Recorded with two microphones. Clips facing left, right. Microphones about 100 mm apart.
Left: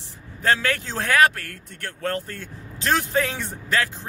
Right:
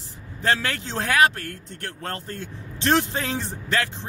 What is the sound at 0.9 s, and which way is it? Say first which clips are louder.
Speech: even; 25° right (ahead or behind).